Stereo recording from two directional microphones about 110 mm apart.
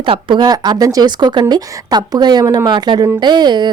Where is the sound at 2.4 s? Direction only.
25° right (ahead or behind).